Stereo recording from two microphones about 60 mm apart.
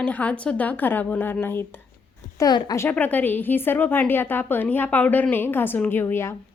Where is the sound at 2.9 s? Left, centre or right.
Left.